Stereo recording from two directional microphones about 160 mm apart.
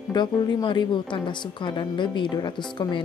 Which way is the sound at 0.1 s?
25° left (ahead or behind).